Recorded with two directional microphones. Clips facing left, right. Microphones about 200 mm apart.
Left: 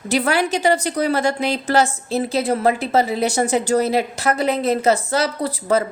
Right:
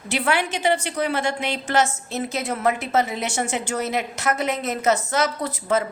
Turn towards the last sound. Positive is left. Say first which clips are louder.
# left 4 dB
turn(degrees=35)  # may be behind; listen again after turning